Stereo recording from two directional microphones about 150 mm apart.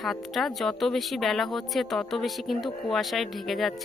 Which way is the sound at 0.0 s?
Centre (ahead or behind).